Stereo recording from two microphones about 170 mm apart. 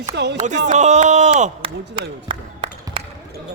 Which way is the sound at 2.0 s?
30° right (ahead or behind).